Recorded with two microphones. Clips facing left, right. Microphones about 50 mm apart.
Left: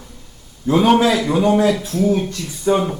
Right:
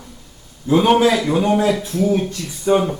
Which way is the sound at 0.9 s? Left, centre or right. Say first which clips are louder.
Even; centre.